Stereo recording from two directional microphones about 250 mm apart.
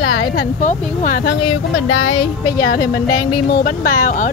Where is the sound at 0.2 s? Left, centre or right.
Left.